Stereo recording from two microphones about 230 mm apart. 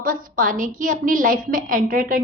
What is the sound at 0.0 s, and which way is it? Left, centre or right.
A child's voice, right.